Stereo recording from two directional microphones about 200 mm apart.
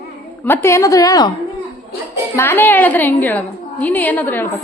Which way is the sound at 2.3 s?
10° left (ahead or behind).